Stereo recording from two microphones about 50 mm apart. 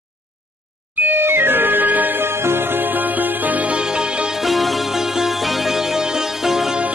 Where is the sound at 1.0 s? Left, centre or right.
Right.